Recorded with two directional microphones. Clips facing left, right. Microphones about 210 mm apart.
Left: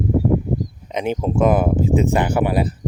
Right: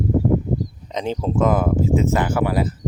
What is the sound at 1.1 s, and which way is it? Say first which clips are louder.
Speech: left 2 dB; 15° left (ahead or behind).